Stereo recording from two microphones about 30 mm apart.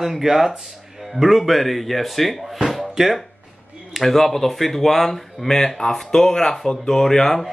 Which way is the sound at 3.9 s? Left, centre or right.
Centre.